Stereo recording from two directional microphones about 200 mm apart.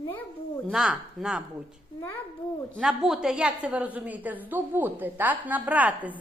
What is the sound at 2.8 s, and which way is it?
A woman's voice, centre (ahead or behind).